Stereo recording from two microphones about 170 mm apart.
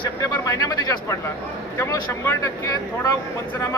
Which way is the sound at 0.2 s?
20° left (ahead or behind).